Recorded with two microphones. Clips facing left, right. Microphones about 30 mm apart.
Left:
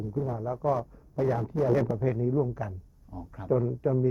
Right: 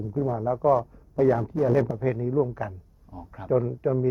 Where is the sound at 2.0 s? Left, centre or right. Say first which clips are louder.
Right 2 dB; right.